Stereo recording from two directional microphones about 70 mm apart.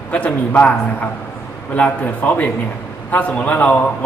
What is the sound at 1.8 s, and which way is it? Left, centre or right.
A man's voice, left.